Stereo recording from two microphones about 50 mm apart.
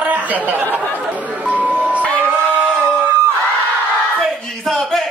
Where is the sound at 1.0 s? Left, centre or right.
Right.